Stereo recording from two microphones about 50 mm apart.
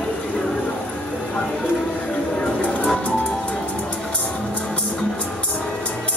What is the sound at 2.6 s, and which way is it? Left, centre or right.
Music, left.